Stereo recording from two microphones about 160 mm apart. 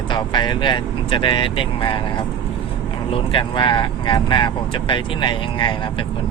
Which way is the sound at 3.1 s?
30° left (ahead or behind).